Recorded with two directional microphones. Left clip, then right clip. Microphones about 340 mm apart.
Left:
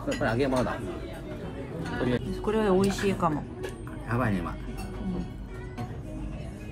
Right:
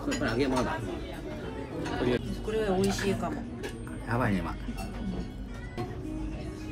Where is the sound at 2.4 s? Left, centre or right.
Centre.